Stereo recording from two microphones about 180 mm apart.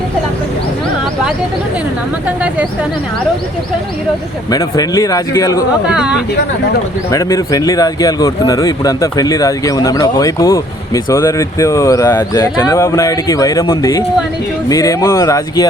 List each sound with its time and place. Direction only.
4.5 s speech: 20° left (ahead or behind)
5.9 s speech: 5° right (ahead or behind)
7.1 s speech: 15° left (ahead or behind)